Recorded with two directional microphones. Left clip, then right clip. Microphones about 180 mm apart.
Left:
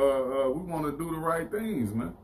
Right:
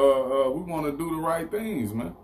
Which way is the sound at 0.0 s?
15° right (ahead or behind).